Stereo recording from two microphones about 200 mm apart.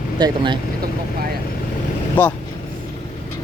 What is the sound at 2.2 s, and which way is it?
Speech, 10° left (ahead or behind).